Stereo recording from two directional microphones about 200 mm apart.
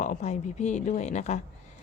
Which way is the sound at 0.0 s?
35° left (ahead or behind).